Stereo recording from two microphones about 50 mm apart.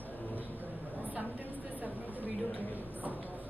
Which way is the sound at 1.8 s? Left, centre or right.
Right.